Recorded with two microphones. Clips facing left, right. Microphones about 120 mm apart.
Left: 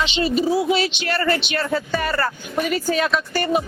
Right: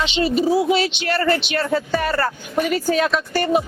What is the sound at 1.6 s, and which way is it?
Speech, 40° right (ahead or behind).